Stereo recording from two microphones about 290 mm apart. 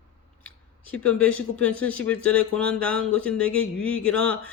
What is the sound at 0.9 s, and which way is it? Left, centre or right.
Speech, centre.